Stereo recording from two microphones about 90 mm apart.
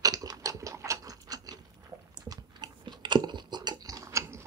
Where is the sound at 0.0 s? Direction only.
45° right (ahead or behind).